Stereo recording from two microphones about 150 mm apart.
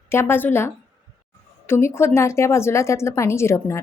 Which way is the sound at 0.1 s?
15° left (ahead or behind).